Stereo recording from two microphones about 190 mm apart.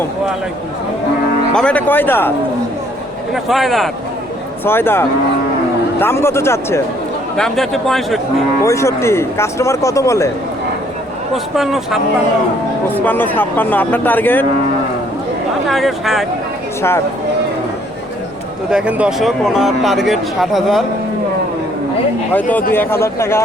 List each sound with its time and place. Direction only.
1.5 s speech: 5° left (ahead or behind)
3.3 s speech: centre (ahead or behind)
4.6 s speech: 10° left (ahead or behind)
7.3 s speech: centre (ahead or behind)
8.6 s speech: 15° left (ahead or behind)
11.5 s speech: centre (ahead or behind)
12.9 s speech: 10° left (ahead or behind)
15.6 s speech: centre (ahead or behind)
18.7 s speech: 5° right (ahead or behind)
22.7 s speech: 10° left (ahead or behind)